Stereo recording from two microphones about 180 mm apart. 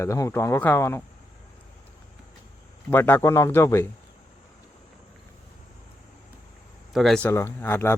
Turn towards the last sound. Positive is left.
turn(degrees=15)  # may be behind; listen again after turning